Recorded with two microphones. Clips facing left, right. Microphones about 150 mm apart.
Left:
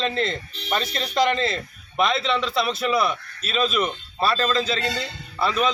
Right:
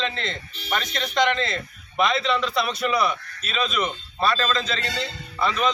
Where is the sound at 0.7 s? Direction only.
35° left (ahead or behind).